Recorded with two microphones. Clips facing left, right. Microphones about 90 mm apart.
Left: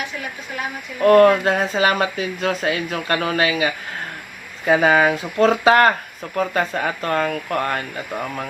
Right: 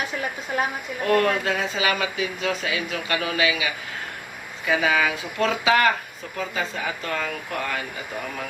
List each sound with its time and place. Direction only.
1.0 s speech: 45° left (ahead or behind)